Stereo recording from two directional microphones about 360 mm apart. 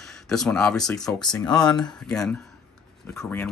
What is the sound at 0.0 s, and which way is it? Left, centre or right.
Speech, centre.